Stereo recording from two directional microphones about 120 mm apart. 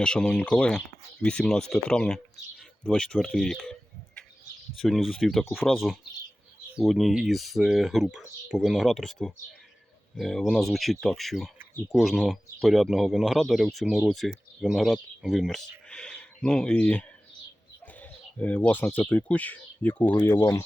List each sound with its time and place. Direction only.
0.0 s speech: 5° left (ahead or behind)
17.9 s a sound: 15° left (ahead or behind)
19.0 s speech: 10° left (ahead or behind)